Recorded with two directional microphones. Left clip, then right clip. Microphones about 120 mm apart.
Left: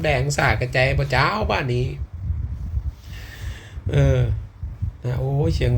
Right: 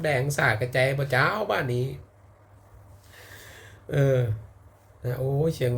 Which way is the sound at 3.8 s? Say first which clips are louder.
Left 1 dB; 30° right (ahead or behind).